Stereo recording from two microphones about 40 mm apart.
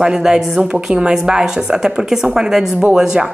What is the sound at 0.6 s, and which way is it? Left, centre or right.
Speech, right.